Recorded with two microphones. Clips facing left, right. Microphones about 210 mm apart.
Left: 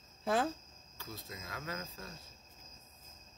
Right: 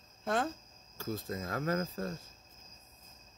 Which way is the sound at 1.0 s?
45° right (ahead or behind).